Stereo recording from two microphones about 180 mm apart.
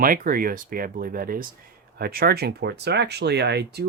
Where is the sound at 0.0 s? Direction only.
50° right (ahead or behind).